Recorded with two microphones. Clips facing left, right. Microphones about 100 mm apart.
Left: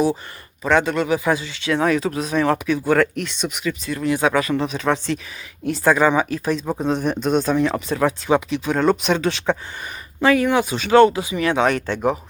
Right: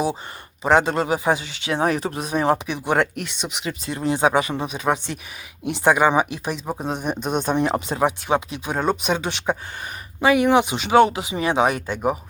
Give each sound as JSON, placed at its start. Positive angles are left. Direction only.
{"t": 0.6, "sound": "speech", "side_deg": -30}
{"t": 3.6, "sound": "speech", "side_deg": -25}
{"t": 4.5, "sound": "speech", "side_deg": -15}
{"t": 7.4, "sound": "speech", "side_deg": -25}